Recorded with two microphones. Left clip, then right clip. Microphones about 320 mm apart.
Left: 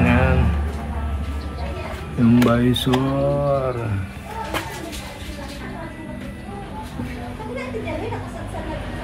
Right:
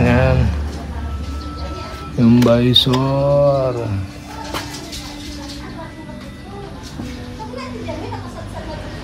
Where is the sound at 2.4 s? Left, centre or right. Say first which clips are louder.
Right 6 dB; right.